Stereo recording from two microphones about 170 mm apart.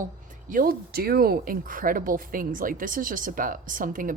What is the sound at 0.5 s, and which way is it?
Speech, 60° right (ahead or behind).